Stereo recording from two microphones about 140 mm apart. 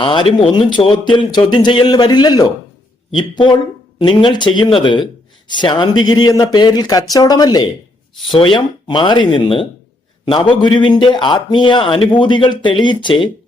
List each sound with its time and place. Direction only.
0.0 s a man's voice: 40° left (ahead or behind)